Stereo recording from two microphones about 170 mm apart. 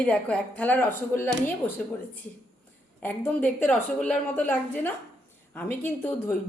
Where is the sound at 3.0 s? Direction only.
10° left (ahead or behind).